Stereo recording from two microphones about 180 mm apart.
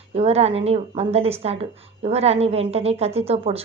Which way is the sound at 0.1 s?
35° right (ahead or behind).